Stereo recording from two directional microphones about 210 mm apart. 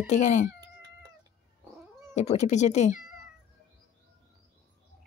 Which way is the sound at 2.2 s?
35° left (ahead or behind).